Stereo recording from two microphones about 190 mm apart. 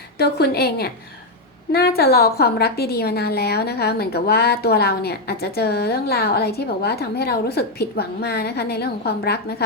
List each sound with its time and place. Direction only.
0.2 s a woman's voice: 55° left (ahead or behind)